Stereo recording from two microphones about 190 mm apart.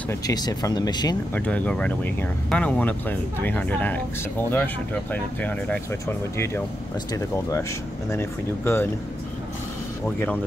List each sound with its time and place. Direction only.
0.1 s speech: 20° left (ahead or behind)
1.3 s speech: 5° left (ahead or behind)
10.0 s speech: 10° left (ahead or behind)